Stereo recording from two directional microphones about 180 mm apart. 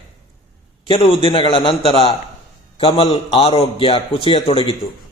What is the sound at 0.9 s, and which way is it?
A man's voice, 30° left (ahead or behind).